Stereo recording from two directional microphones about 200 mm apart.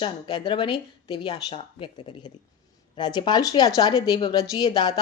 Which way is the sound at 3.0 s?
20° left (ahead or behind).